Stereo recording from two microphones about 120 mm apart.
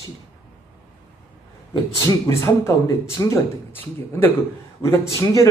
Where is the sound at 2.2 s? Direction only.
25° left (ahead or behind).